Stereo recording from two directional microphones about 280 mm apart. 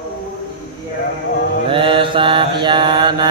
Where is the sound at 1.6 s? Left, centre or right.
Centre.